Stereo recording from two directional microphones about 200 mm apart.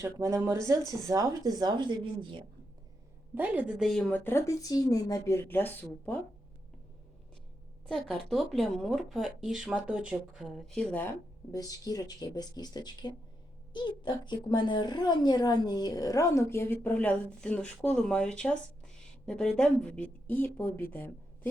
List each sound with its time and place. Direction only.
0.0 s speech: 15° right (ahead or behind)
3.3 s a woman's voice: 10° right (ahead or behind); by 6.1 s 10° left (ahead or behind)
7.9 s speech: centre (ahead or behind)
11.5 s a woman's voice: 15° left (ahead or behind)